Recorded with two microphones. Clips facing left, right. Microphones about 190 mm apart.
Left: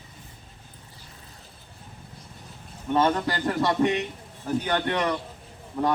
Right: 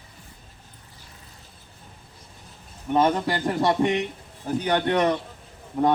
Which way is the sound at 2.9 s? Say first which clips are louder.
Right 2 dB; 20° right (ahead or behind).